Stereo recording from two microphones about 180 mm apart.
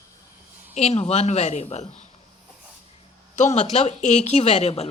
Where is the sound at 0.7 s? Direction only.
35° left (ahead or behind).